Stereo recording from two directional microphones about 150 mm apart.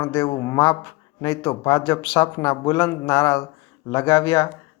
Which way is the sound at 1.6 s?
15° left (ahead or behind).